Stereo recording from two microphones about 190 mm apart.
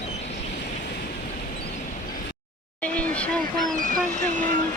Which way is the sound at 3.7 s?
45° right (ahead or behind).